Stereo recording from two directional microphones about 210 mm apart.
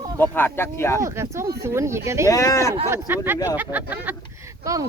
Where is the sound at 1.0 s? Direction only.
15° right (ahead or behind).